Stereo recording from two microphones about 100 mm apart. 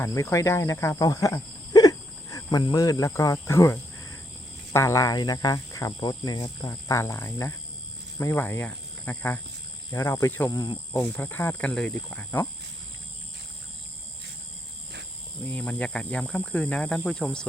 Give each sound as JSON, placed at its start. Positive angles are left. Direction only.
{"t": 0.0, "sound": "speech", "side_deg": 30}
{"t": 6.0, "sound": "speech", "side_deg": 45}
{"t": 10.5, "sound": "speech", "side_deg": 40}
{"t": 11.0, "sound": "speech", "side_deg": 20}
{"t": 15.4, "sound": "speech", "side_deg": 10}